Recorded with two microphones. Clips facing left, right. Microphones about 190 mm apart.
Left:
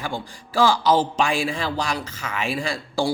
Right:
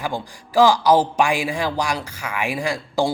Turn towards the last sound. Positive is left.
turn(degrees=-15)  # may be behind; listen again after turning